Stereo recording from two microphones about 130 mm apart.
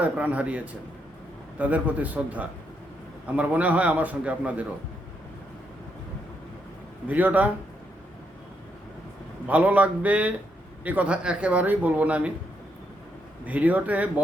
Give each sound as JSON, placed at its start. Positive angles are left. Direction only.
{"t": 0.0, "sound": "speech", "side_deg": -10}
{"t": 7.1, "sound": "speech", "side_deg": -10}
{"t": 9.5, "sound": "speech", "side_deg": -10}
{"t": 13.4, "sound": "speech", "side_deg": -10}